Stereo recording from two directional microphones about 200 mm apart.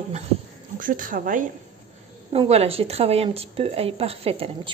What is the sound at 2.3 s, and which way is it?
A woman's voice, 30° right (ahead or behind).